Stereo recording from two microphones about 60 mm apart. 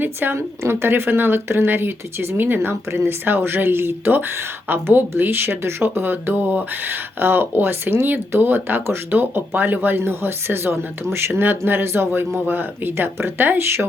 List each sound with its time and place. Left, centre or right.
0.0 s speech: right
0.3 s speech: right
2.6 s speech: right